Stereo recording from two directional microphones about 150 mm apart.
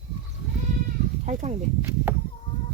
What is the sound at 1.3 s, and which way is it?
Speech, 50° right (ahead or behind).